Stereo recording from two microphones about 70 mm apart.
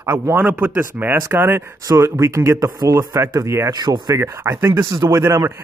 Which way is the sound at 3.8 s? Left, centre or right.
Right.